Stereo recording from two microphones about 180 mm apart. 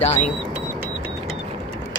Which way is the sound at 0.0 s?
35° left (ahead or behind).